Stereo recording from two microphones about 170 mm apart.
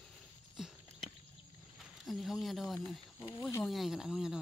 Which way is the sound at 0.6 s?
Centre (ahead or behind).